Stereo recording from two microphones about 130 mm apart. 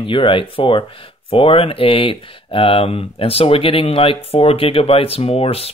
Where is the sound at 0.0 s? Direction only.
40° left (ahead or behind).